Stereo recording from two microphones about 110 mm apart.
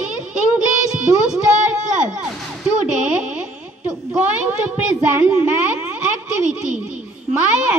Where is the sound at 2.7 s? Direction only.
10° right (ahead or behind).